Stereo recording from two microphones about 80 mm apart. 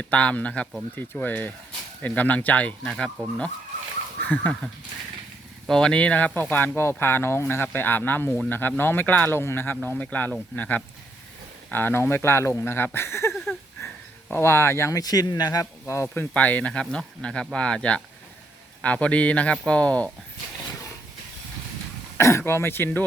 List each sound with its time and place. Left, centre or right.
0.0 s speech: centre
4.2 s a sound: left
5.6 s speech: centre; by 13.3 s left
13.3 s a sound: centre
14.4 s speech: left
15.9 s speech: left
16.3 s speech: centre
22.2 s speech: left